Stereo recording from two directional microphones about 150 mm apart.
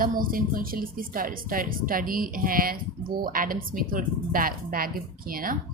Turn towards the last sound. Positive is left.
turn(degrees=-70)  # may be behind; listen again after turning